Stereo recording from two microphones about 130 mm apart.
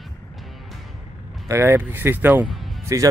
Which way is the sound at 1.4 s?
20° right (ahead or behind).